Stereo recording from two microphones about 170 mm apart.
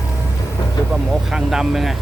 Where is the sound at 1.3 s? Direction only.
5° right (ahead or behind).